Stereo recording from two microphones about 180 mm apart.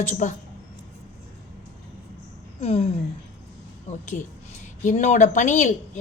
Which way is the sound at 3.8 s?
40° left (ahead or behind).